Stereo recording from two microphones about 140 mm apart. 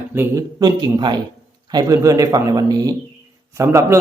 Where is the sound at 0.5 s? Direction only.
30° right (ahead or behind).